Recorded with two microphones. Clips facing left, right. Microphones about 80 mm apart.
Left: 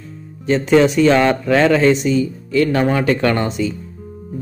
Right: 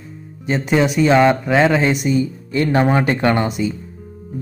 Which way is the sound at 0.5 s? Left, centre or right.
Centre.